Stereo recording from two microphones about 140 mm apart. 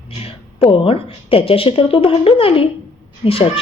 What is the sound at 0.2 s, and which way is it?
A woman's voice, 40° left (ahead or behind).